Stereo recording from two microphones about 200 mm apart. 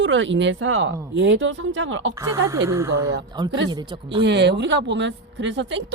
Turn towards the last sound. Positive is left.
turn(degrees=-65)  # may be behind; listen again after turning